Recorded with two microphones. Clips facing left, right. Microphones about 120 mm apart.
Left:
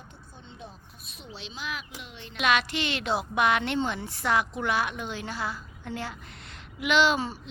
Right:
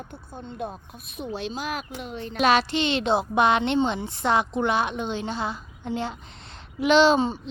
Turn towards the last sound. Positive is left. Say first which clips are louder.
# right 6 dB
turn(degrees=-25)  # may be behind; listen again after turning